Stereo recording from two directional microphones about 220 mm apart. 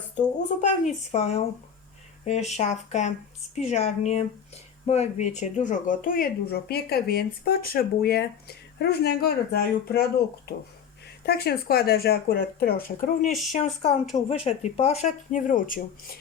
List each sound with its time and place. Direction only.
0.2 s speech: 35° left (ahead or behind)
11.3 s speech: 45° left (ahead or behind)